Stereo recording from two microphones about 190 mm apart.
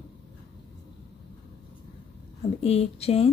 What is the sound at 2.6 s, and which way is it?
Speech, 30° left (ahead or behind).